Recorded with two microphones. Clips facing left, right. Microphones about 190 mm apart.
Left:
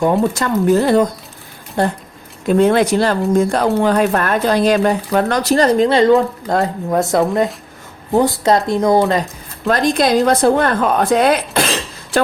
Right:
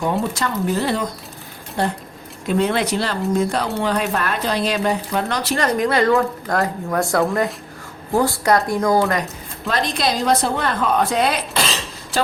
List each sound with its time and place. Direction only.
0.0 s speech: 50° left (ahead or behind)
2.6 s speech: 45° left (ahead or behind); by 9.2 s 25° left (ahead or behind)
9.6 s speech: 50° left (ahead or behind)